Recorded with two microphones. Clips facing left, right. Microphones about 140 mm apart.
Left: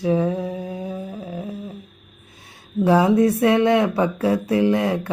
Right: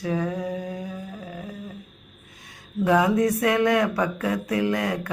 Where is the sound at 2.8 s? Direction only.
30° left (ahead or behind).